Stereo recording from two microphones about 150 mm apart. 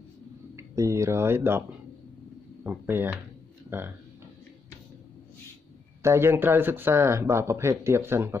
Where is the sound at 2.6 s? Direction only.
15° right (ahead or behind).